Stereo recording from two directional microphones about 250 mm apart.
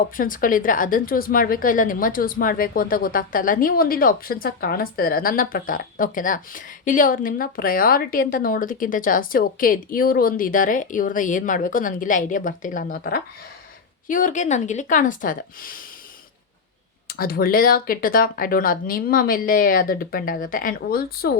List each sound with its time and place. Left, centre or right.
0.2 s a woman's voice: left
17.1 s a woman's voice: left